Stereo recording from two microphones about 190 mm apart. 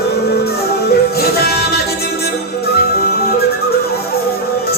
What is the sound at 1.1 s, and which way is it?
Music, 55° left (ahead or behind).